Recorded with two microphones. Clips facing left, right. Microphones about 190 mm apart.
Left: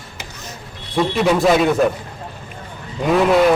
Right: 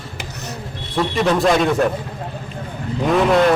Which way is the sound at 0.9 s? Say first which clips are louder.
Left 1 dB; centre (ahead or behind).